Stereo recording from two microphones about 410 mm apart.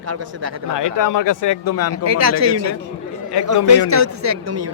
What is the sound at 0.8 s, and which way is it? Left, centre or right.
Speech, left.